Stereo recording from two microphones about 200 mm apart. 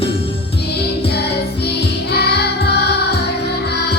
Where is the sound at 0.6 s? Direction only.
55° left (ahead or behind).